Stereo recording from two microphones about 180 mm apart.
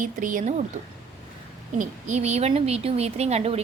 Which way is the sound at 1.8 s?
40° right (ahead or behind).